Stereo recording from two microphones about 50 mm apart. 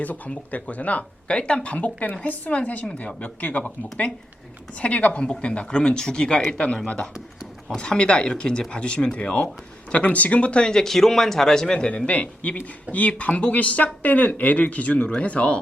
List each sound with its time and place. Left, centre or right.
0.0 s speech: left